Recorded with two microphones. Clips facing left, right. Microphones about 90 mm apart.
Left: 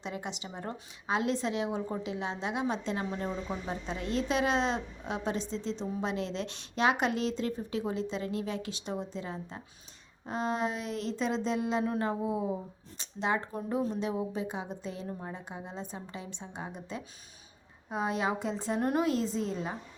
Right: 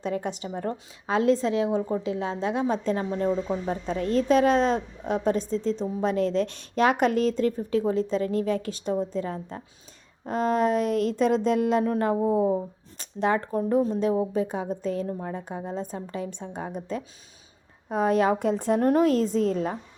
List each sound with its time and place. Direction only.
0.0 s a woman's voice: 45° right (ahead or behind)
13.0 s a sound: 50° right (ahead or behind)
13.5 s a woman's voice: 40° right (ahead or behind)